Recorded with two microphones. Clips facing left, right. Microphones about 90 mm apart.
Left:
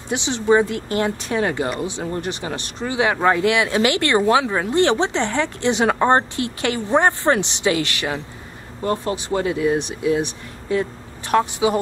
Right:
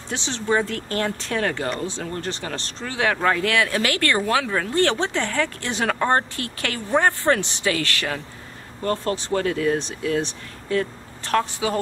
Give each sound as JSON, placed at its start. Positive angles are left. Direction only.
{"t": 0.1, "sound": "speech", "side_deg": 15}